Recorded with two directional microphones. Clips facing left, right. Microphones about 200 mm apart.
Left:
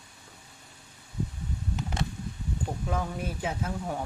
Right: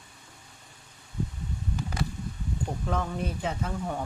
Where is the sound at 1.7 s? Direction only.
25° left (ahead or behind).